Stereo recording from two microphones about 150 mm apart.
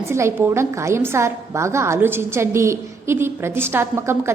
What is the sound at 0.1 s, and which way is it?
A woman's voice, 20° right (ahead or behind).